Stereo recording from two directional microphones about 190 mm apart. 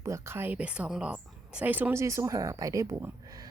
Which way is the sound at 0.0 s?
15° right (ahead or behind).